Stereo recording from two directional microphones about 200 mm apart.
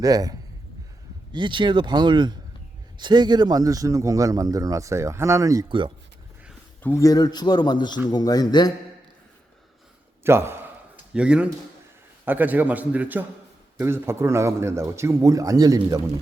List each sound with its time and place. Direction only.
0.0 s a man's voice: 20° right (ahead or behind)
6.8 s a man's voice: 15° left (ahead or behind)
10.2 s a man's voice: 10° right (ahead or behind)